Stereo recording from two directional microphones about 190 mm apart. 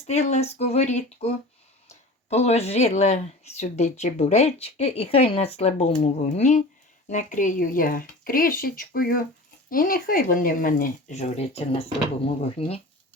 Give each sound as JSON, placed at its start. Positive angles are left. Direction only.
{"t": 0.0, "sound": "speech", "side_deg": 35}